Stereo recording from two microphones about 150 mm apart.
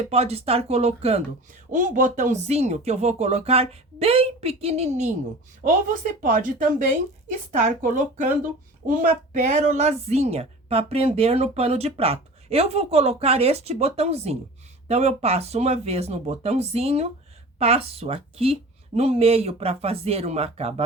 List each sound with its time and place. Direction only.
0.0 s a woman's voice: 45° right (ahead or behind)
1.7 s a woman's voice: 60° right (ahead or behind)
5.6 s a woman's voice: 60° right (ahead or behind); by 20.8 s 45° right (ahead or behind)